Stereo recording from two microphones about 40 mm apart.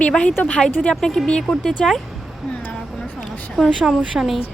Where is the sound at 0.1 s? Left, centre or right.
Left.